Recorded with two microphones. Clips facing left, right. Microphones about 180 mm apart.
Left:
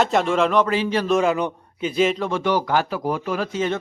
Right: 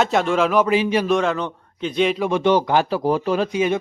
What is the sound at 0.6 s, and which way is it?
Speech, 15° right (ahead or behind).